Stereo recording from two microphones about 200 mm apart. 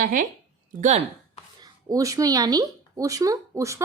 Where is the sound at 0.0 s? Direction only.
40° right (ahead or behind).